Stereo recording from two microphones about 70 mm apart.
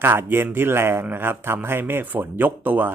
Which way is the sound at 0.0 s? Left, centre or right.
Right.